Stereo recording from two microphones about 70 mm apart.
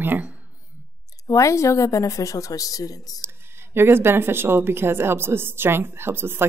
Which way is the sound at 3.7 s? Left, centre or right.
Right.